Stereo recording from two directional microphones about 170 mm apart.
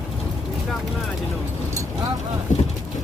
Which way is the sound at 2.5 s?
45° left (ahead or behind).